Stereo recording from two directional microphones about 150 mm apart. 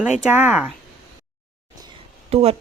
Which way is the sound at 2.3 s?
45° right (ahead or behind).